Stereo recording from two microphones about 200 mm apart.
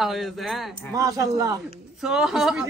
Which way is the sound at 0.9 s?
15° right (ahead or behind).